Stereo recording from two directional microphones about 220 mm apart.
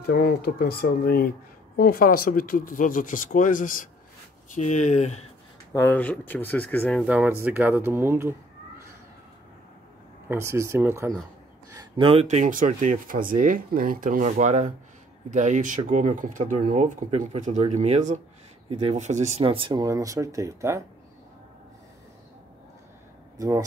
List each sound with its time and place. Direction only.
0.0 s speech: 45° left (ahead or behind)
5.7 s speech: 10° left (ahead or behind)
7.1 s speech: 5° right (ahead or behind)
10.2 s speech: 10° right (ahead or behind)
23.3 s speech: 15° right (ahead or behind)